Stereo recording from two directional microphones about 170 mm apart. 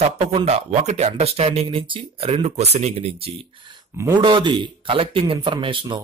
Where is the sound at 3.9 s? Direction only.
15° right (ahead or behind).